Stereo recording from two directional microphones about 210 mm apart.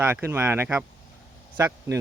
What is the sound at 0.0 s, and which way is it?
Speech, 10° right (ahead or behind).